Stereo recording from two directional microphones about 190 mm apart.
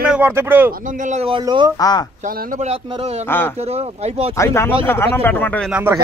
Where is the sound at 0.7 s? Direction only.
40° right (ahead or behind).